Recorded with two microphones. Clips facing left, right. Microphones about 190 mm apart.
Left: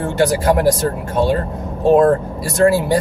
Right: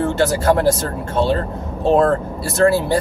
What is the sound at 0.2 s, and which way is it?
Speech, 15° left (ahead or behind).